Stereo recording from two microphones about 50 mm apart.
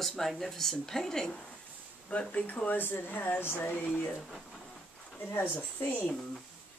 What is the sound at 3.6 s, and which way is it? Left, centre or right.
Speech, left.